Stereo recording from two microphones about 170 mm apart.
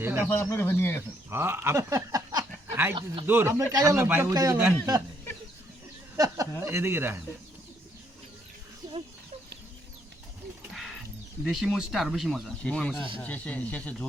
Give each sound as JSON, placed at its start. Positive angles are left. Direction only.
{"t": 0.0, "sound": "speech", "side_deg": -15}
{"t": 0.3, "sound": "speech", "side_deg": 10}
{"t": 1.3, "sound": "a man's voice", "side_deg": -15}
{"t": 6.1, "sound": "a man's voice", "side_deg": -20}
{"t": 10.8, "sound": "music", "side_deg": 0}
{"t": 11.4, "sound": "speech", "side_deg": 0}